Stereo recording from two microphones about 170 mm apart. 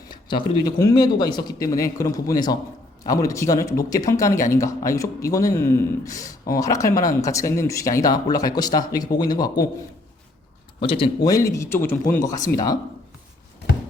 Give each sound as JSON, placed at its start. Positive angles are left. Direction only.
{"t": 0.6, "sound": "speech", "side_deg": 20}
{"t": 10.8, "sound": "speech", "side_deg": 30}